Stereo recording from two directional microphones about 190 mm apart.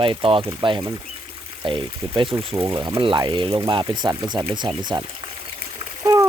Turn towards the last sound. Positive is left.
turn(degrees=-15)  # may be behind; listen again after turning